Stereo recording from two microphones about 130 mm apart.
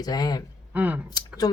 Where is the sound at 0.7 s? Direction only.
10° right (ahead or behind).